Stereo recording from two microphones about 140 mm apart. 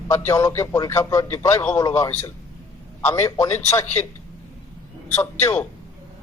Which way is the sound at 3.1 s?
20° left (ahead or behind).